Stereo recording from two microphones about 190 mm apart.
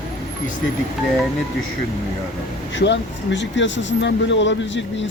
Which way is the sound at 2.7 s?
70° left (ahead or behind).